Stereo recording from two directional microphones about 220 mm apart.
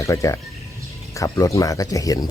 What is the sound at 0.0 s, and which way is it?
Speech, 15° left (ahead or behind).